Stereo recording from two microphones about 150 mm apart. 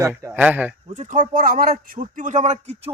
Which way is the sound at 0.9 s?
60° right (ahead or behind).